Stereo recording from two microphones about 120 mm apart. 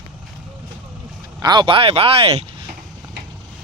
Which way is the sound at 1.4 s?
35° right (ahead or behind).